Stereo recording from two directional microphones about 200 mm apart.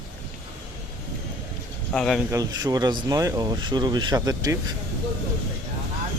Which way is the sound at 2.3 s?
20° right (ahead or behind).